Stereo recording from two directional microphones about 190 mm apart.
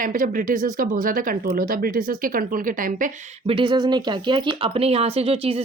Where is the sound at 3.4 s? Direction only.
25° right (ahead or behind).